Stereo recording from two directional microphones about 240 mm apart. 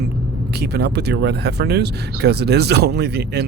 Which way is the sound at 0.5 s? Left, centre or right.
Right.